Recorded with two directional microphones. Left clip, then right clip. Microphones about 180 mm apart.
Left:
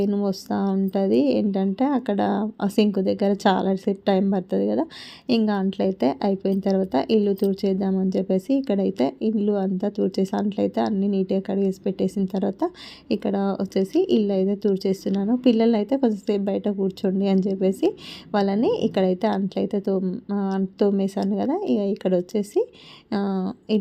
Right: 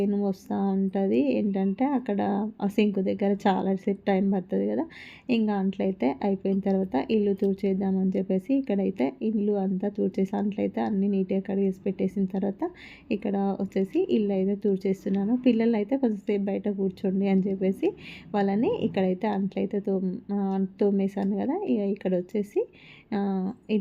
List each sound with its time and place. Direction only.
0.1 s a woman's voice: 15° left (ahead or behind)